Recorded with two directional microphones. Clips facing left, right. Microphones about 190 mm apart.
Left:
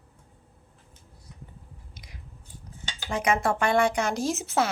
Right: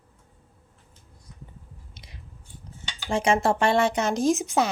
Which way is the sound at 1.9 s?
25° right (ahead or behind).